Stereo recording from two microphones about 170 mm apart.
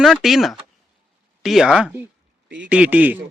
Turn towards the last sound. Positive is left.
turn(degrees=-10)  # may be behind; listen again after turning